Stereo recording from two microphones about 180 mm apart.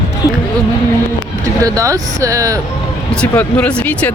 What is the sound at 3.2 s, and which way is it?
Speech, 5° left (ahead or behind).